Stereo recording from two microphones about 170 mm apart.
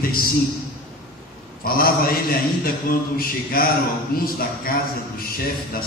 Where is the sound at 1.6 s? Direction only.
60° left (ahead or behind).